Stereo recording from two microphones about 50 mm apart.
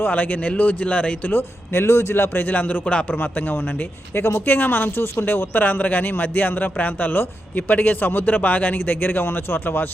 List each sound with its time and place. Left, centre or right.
0.0 s speech: left
1.3 s speech: left
2.8 s speech: left
3.1 s speech: left